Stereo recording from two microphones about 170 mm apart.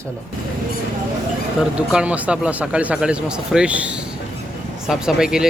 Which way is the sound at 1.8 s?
5° right (ahead or behind).